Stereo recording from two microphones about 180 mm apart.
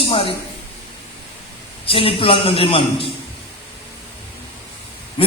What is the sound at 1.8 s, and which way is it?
A man's voice, 30° left (ahead or behind).